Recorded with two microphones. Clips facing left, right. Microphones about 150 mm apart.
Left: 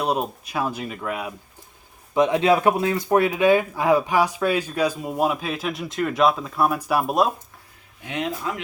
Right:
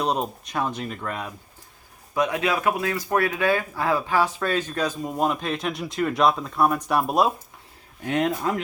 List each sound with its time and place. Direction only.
0.0 s speech: 5° left (ahead or behind)
2.1 s speech: 25° left (ahead or behind); by 7.3 s centre (ahead or behind)
8.0 s speech: 50° right (ahead or behind)